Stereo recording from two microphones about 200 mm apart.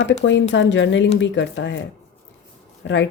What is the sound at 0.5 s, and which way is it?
Speech, 65° left (ahead or behind).